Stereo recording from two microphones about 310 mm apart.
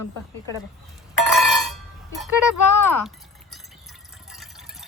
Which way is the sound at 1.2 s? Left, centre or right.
Centre.